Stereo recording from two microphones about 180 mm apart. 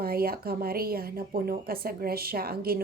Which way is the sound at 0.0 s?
55° right (ahead or behind).